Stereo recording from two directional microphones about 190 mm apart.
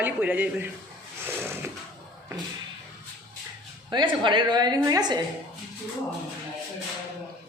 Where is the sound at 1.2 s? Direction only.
10° right (ahead or behind).